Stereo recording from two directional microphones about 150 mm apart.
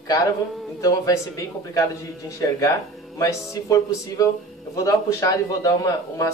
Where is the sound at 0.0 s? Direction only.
25° left (ahead or behind).